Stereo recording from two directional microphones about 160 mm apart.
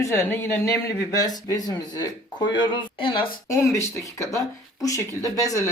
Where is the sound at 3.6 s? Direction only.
20° left (ahead or behind).